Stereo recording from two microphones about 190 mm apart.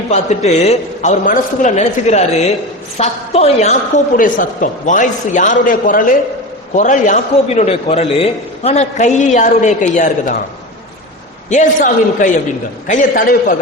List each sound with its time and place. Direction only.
0.1 s a man's voice: 35° left (ahead or behind)
11.4 s a man's voice: 40° left (ahead or behind)